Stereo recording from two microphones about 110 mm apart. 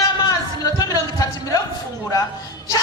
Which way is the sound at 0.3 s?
30° left (ahead or behind).